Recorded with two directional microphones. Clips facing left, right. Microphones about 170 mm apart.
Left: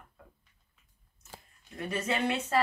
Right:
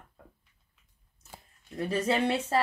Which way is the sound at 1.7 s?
30° right (ahead or behind).